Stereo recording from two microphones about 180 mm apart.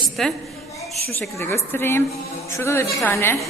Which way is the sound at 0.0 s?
Centre (ahead or behind).